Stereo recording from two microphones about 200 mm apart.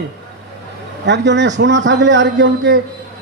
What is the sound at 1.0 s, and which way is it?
A woman's voice, 60° right (ahead or behind).